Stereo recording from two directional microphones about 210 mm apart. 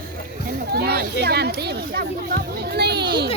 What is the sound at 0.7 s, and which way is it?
Speech, 50° right (ahead or behind).